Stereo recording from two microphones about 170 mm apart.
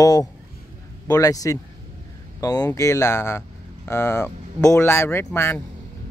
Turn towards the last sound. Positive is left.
turn(degrees=15)  # may be behind; listen again after turning